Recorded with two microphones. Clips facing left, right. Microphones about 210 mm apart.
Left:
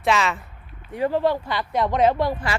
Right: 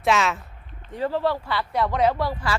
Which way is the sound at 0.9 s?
15° left (ahead or behind).